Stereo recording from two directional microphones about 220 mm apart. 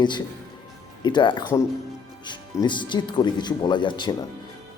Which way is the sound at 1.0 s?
20° left (ahead or behind).